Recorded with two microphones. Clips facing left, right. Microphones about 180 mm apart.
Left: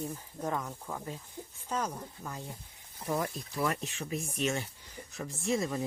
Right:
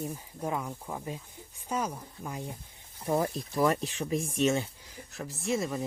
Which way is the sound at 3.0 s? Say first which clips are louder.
Right 4 dB; 30° right (ahead or behind).